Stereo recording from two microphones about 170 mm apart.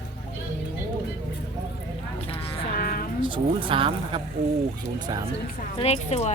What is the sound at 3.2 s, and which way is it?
Speech, 30° right (ahead or behind).